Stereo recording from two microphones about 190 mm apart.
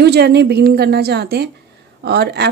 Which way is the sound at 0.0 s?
60° right (ahead or behind).